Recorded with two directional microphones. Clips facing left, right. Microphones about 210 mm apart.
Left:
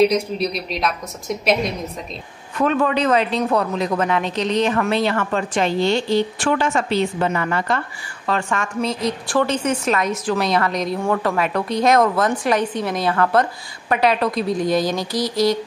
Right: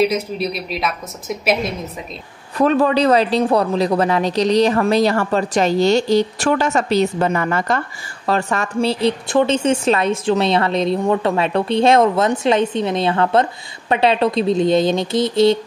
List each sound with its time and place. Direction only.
0.0 s a woman's voice: centre (ahead or behind)
2.5 s a woman's voice: 35° right (ahead or behind)